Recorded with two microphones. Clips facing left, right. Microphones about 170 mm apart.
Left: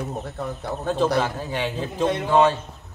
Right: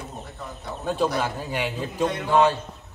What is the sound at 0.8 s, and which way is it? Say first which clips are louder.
A man's voice: left 3 dB; 10° right (ahead or behind).